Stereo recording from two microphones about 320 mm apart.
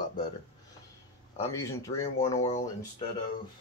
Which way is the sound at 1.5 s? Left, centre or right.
Centre.